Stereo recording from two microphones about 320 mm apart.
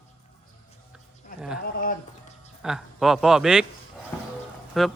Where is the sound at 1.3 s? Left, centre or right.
Left.